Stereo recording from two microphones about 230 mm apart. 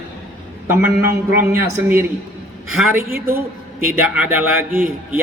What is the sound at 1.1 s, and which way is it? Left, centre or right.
Speech, centre.